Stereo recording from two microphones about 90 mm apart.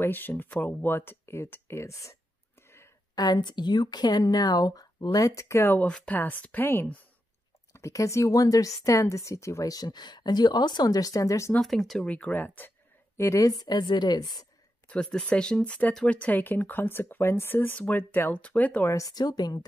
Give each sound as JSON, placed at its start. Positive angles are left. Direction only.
{"t": 0.0, "sound": "speech", "side_deg": 20}
{"t": 3.2, "sound": "speech", "side_deg": 50}
{"t": 5.8, "sound": "speech", "side_deg": 10}
{"t": 7.7, "sound": "a woman's voice", "side_deg": 35}
{"t": 11.6, "sound": "speech", "side_deg": 0}
{"t": 13.2, "sound": "speech", "side_deg": 35}
{"t": 14.9, "sound": "speech", "side_deg": 10}
{"t": 18.9, "sound": "speech", "side_deg": 40}